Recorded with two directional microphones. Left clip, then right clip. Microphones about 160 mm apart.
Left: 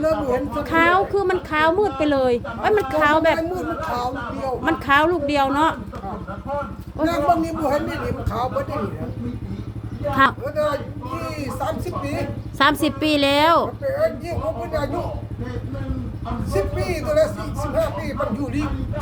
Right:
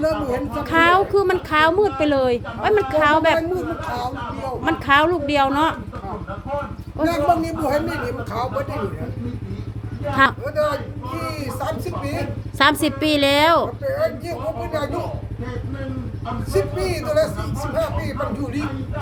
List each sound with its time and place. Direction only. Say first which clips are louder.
0.0 s a man's voice: left 1 dB; centre (ahead or behind)
3.5 s speech: even; 20° left (ahead or behind)
4.6 s a man's voice: right 1 dB; centre (ahead or behind)
7.0 s a man's voice: right 1 dB; 5° right (ahead or behind)
10.1 s a man's voice: even; centre (ahead or behind)
16.5 s a man's voice: right 2 dB; 5° right (ahead or behind)